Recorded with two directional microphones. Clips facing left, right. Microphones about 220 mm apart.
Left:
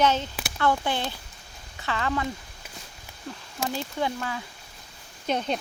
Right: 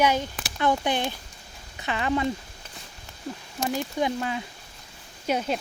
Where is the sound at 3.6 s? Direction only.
15° right (ahead or behind).